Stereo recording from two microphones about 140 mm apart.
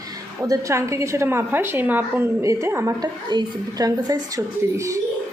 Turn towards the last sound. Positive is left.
turn(degrees=-20)  # may be behind; listen again after turning